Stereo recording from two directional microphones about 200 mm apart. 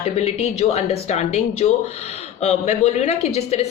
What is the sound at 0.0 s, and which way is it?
Speech, 30° left (ahead or behind).